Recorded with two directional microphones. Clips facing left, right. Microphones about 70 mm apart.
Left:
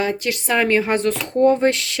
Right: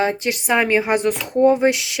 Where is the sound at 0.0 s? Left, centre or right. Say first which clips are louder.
Right 2 dB; right.